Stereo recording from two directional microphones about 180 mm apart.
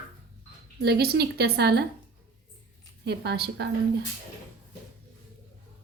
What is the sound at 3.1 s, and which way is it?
Speech, 65° right (ahead or behind).